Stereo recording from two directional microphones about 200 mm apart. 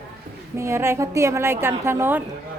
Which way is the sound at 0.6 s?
15° right (ahead or behind).